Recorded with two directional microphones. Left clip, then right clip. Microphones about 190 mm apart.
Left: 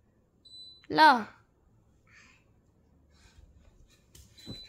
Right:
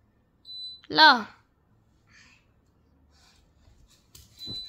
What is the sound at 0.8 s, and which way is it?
Speech, 10° left (ahead or behind).